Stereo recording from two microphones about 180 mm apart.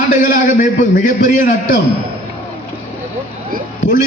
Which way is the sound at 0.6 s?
45° left (ahead or behind).